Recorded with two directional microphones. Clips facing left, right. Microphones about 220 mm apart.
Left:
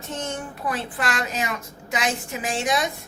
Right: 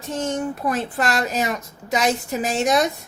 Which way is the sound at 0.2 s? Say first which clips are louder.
Right 9 dB; 40° right (ahead or behind).